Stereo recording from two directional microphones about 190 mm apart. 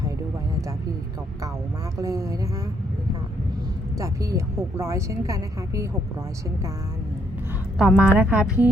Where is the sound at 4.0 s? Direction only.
15° right (ahead or behind).